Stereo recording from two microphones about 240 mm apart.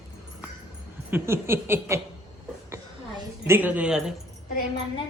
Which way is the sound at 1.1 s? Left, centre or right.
Centre.